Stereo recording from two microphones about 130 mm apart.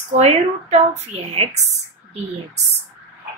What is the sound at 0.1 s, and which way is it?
A woman's voice, 55° right (ahead or behind).